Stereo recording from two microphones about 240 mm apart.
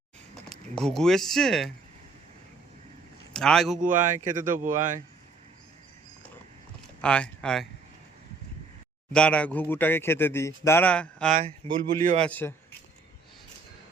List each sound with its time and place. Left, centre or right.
0.8 s speech: centre
3.3 s speech: centre
3.8 s speech: right
7.0 s speech: centre
9.1 s speech: centre
11.6 s speech: right
12.2 s speech: centre